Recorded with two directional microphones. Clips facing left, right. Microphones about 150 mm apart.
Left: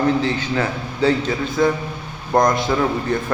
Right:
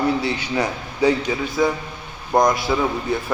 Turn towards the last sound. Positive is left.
turn(degrees=-5)  # may be behind; listen again after turning